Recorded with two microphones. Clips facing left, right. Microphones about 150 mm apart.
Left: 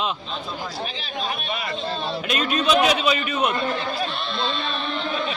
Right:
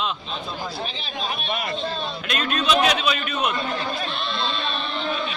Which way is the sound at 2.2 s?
5° left (ahead or behind).